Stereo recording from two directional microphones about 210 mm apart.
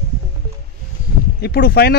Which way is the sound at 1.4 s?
45° left (ahead or behind).